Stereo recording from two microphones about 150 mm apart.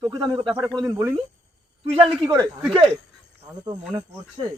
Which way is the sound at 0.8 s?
20° right (ahead or behind).